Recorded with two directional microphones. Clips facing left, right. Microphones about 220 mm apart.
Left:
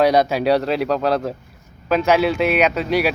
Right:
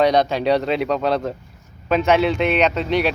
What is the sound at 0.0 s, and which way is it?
A man's voice, 5° left (ahead or behind).